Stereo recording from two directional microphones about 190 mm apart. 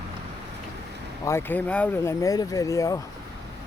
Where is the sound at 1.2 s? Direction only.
10° left (ahead or behind).